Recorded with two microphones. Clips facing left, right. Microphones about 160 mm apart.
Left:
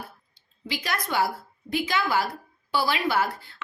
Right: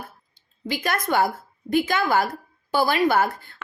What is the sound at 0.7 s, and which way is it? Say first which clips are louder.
A woman's voice: right 5 dB; 50° right (ahead or behind).